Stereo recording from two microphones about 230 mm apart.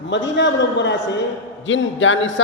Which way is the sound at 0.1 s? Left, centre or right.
Left.